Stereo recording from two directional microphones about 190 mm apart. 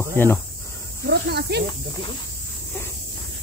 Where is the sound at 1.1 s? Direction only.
60° right (ahead or behind).